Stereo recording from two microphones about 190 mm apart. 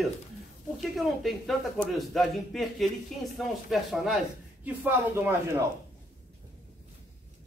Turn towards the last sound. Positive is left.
turn(degrees=-10)  # may be behind; listen again after turning